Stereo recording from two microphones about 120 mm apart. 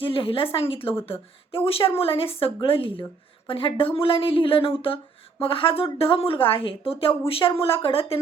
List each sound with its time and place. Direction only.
0.0 s speech: 50° left (ahead or behind)